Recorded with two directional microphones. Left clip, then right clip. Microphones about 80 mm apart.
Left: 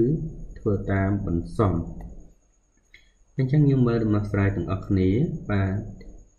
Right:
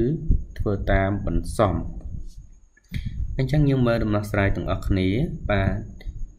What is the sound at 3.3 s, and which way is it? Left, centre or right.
Speech, right.